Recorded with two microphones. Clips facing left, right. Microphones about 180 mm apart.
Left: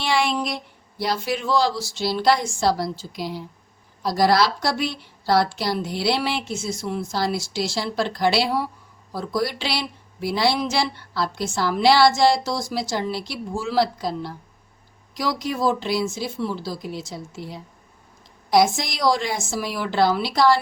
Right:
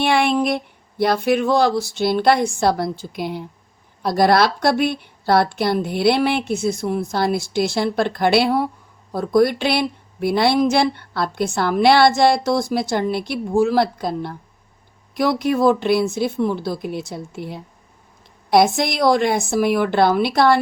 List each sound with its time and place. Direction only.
0.0 s speech: 55° right (ahead or behind)